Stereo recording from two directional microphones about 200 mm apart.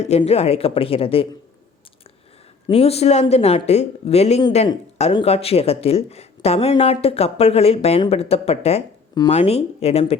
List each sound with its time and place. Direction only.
0.0 s speech: 30° left (ahead or behind)
2.6 s speech: 30° left (ahead or behind)